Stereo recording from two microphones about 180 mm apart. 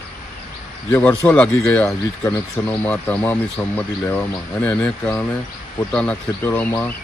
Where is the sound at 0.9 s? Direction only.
10° left (ahead or behind).